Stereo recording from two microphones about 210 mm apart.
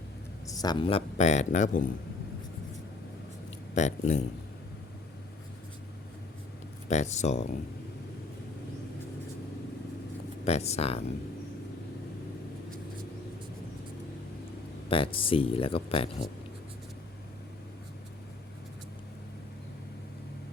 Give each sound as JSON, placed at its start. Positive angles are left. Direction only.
{"t": 0.4, "sound": "a man's voice", "side_deg": 20}
{"t": 3.8, "sound": "speech", "side_deg": 35}
{"t": 6.8, "sound": "speech", "side_deg": 35}
{"t": 10.4, "sound": "a man's voice", "side_deg": 30}
{"t": 14.8, "sound": "a man's voice", "side_deg": 25}